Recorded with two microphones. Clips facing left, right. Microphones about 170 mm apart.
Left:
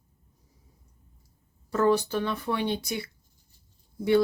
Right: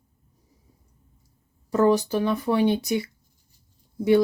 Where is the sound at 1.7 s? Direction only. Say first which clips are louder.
Right 4 dB; 15° right (ahead or behind).